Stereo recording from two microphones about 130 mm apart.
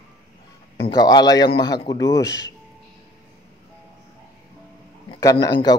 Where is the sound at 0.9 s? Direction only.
30° left (ahead or behind).